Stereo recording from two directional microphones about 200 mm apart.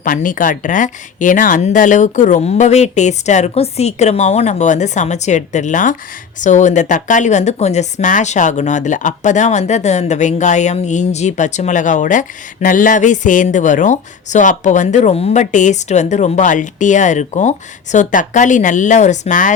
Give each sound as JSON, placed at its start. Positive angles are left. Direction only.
{"t": 0.0, "sound": "speech", "side_deg": 40}